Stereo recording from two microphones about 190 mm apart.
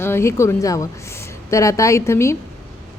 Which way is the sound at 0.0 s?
15° left (ahead or behind).